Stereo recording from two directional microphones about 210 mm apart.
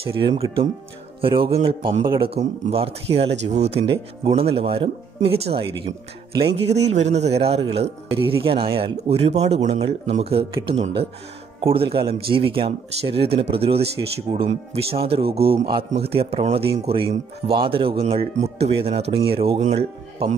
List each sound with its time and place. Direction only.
0.0 s a man's voice: 25° right (ahead or behind)